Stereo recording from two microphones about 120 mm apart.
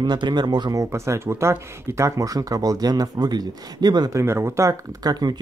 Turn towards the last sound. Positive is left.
turn(degrees=-30)  # may be behind; listen again after turning